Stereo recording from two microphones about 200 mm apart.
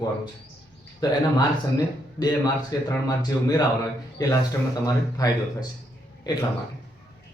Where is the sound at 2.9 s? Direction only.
15° left (ahead or behind).